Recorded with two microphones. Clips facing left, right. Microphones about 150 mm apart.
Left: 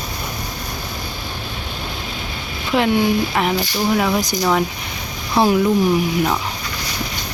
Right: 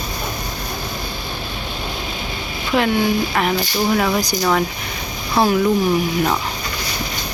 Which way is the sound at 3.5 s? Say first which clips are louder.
Even; 10° left (ahead or behind).